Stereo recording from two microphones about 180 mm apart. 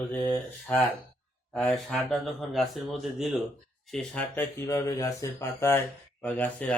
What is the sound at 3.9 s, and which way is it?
Mantra, 5° left (ahead or behind).